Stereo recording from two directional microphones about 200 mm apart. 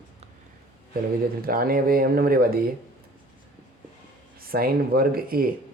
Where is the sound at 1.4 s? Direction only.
45° right (ahead or behind).